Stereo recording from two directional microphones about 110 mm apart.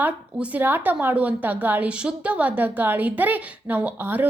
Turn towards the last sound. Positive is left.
turn(degrees=-15)  # may be behind; listen again after turning